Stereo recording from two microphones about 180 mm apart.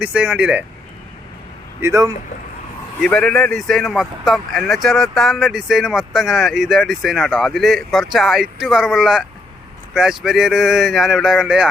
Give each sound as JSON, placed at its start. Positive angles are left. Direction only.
{"t": 0.0, "sound": "speech", "side_deg": -5}
{"t": 1.8, "sound": "speech", "side_deg": -15}
{"t": 3.0, "sound": "speech", "side_deg": 5}